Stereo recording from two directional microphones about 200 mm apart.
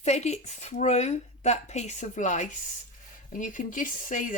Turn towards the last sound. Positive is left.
turn(degrees=40)  # may be behind; listen again after turning